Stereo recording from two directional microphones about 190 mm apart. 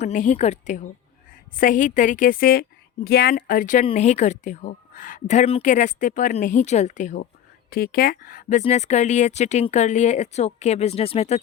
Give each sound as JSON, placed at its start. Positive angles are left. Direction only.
{"t": 0.0, "sound": "a woman's voice", "side_deg": 40}